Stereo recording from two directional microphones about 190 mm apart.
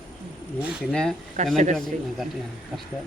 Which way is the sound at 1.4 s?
40° right (ahead or behind).